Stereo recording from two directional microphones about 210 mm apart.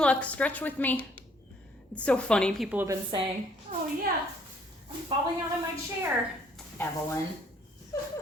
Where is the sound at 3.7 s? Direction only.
35° right (ahead or behind).